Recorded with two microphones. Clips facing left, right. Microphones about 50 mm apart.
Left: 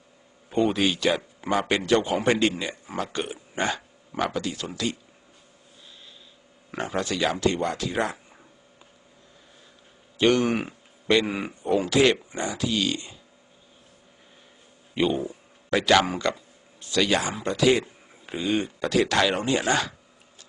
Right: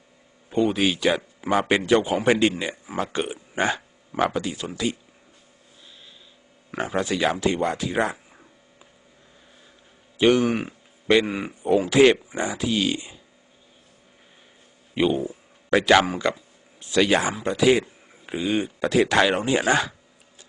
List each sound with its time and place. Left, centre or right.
0.5 s speech: centre
0.8 s speech: centre
6.7 s speech: centre
10.2 s speech: centre
11.9 s speech: centre
12.1 s speech: centre
12.4 s speech: centre
14.9 s speech: centre
17.3 s speech: centre